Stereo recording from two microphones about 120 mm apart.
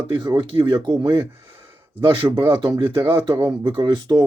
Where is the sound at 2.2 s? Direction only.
20° right (ahead or behind).